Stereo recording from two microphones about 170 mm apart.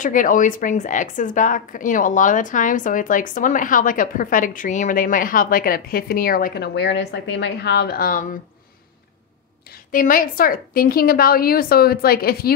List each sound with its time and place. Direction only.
0.0 s a woman's voice: 50° left (ahead or behind)
9.8 s a woman's voice: 55° left (ahead or behind)